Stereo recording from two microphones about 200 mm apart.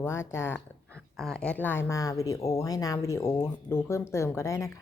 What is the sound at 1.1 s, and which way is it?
Speech, centre (ahead or behind).